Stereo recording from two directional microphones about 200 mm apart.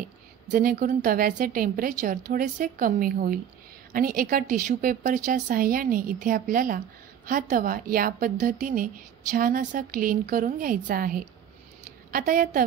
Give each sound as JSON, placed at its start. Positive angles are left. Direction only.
{"t": 0.0, "sound": "a woman's voice", "side_deg": -45}